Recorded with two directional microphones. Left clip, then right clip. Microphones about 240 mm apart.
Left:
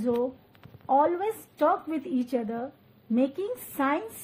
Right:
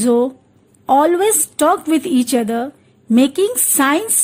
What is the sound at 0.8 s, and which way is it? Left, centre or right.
A woman's voice, right.